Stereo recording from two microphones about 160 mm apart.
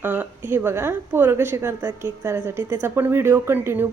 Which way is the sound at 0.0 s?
10° right (ahead or behind).